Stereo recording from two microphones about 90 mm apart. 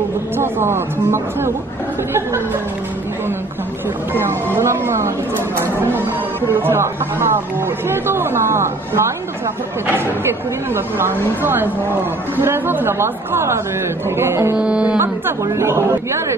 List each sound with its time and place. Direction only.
0.4 s speech: 25° right (ahead or behind)
4.1 s speech: 25° right (ahead or behind)
10.7 s speech: 25° right (ahead or behind)
14.6 s speech: 10° right (ahead or behind)
15.0 s speech: 30° right (ahead or behind)